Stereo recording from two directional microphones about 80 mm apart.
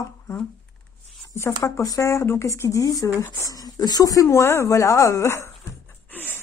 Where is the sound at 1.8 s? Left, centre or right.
Left.